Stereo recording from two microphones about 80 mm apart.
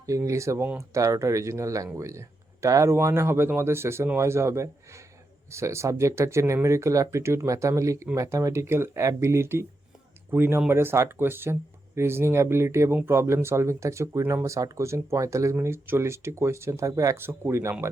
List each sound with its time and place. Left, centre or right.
0.0 s speech: right
15.5 s speech: right
17.2 s speech: right